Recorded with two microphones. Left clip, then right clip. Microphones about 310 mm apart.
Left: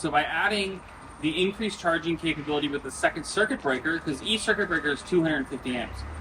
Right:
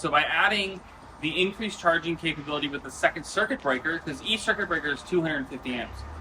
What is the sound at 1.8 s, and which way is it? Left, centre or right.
Speech, right.